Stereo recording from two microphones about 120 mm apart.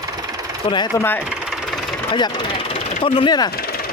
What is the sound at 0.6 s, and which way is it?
Speech, 40° left (ahead or behind).